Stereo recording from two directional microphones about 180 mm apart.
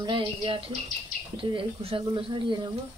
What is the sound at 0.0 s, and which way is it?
Speech, 25° right (ahead or behind).